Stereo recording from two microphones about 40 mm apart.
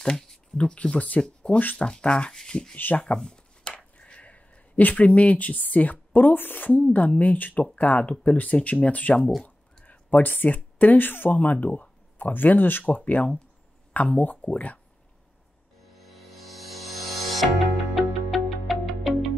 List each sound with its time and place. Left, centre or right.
0.0 s a sound: centre
0.9 s speech: left
1.5 s speech: left
2.7 s speech: left
3.3 s speech: left
11.3 s speech: left
12.3 s speech: left
14.4 s speech: left
16.0 s music: centre